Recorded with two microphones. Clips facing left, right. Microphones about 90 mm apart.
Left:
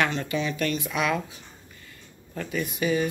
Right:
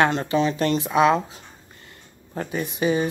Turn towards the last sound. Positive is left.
turn(degrees=-30)  # may be behind; listen again after turning